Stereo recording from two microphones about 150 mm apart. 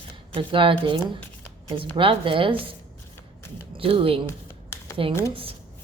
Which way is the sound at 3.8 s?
35° right (ahead or behind).